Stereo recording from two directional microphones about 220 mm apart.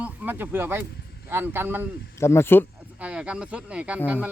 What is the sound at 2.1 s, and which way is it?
Speech, 10° left (ahead or behind).